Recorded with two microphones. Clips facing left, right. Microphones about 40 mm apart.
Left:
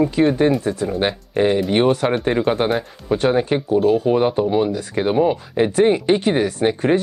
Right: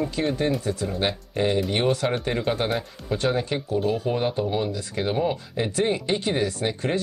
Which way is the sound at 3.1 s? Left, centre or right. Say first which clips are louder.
Left 7 dB; left.